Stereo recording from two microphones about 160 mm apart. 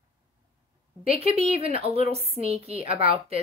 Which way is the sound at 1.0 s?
40° right (ahead or behind).